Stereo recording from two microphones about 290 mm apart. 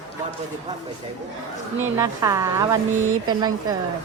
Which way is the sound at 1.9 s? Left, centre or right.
Centre.